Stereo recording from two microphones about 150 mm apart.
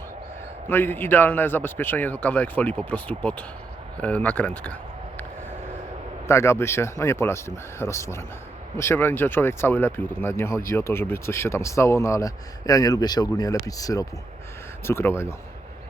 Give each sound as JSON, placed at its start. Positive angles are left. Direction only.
{"t": 0.7, "sound": "speech", "side_deg": 15}
{"t": 6.2, "sound": "speech", "side_deg": 20}